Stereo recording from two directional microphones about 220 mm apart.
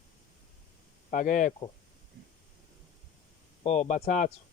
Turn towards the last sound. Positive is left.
turn(degrees=35)  # may be behind; listen again after turning